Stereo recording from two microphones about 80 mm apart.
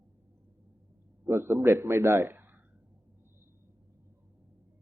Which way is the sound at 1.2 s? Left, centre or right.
Right.